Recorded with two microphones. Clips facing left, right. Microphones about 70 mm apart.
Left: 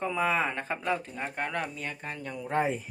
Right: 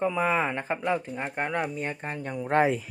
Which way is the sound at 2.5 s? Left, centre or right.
Right.